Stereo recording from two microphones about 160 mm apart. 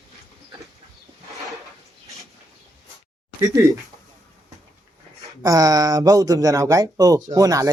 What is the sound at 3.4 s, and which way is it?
Speech, 20° right (ahead or behind).